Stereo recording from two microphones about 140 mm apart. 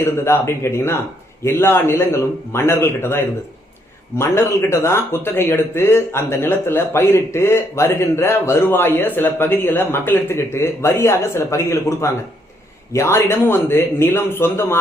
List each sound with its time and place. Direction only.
0.0 s speech: 20° left (ahead or behind)